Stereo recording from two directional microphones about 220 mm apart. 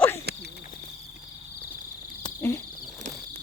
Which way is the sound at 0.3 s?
50° right (ahead or behind).